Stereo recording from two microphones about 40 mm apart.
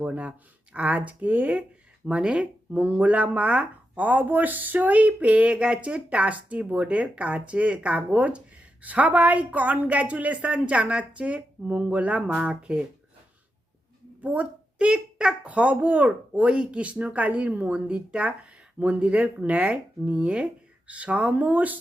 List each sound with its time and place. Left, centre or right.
0.0 s speech: right
2.0 s speech: right
12.3 s speech: right
14.2 s a sound: right
14.8 s speech: right
15.4 s speech: right